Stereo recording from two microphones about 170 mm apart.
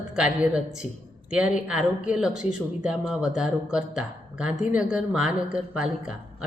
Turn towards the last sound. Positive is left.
turn(degrees=-5)  # may be behind; listen again after turning